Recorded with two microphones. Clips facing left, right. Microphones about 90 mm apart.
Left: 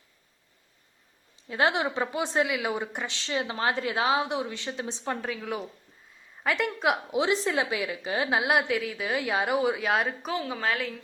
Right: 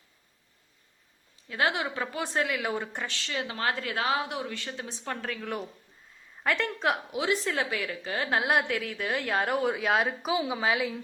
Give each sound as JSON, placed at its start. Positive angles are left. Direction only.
{"t": 1.5, "sound": "a woman's voice", "side_deg": 25}
{"t": 2.4, "sound": "a woman's voice", "side_deg": 10}
{"t": 7.1, "sound": "a woman's voice", "side_deg": 25}
{"t": 8.4, "sound": "a woman's voice", "side_deg": 5}